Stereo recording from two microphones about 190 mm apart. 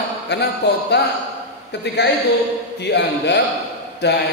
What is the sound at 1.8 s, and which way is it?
Speech, 65° left (ahead or behind).